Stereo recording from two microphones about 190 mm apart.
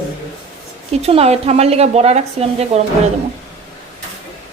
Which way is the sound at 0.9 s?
30° right (ahead or behind).